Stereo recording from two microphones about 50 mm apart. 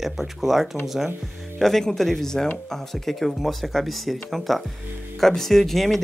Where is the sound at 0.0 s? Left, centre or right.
Centre.